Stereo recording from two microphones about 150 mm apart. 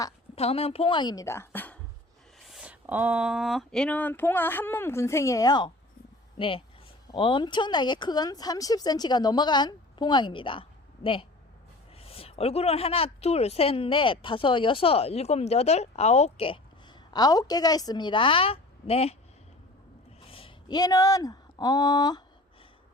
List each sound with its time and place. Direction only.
0.3 s a woman's voice: 40° left (ahead or behind); by 1.8 s 10° left (ahead or behind)
2.5 s a woman's voice: 5° right (ahead or behind); by 19.1 s 40° left (ahead or behind)
20.3 s speech: 35° left (ahead or behind)